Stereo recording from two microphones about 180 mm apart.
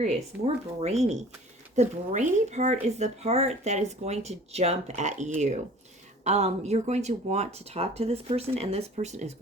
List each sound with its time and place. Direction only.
0.0 s speech: 35° right (ahead or behind)